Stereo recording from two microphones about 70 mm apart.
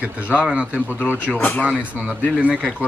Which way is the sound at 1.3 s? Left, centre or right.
Left.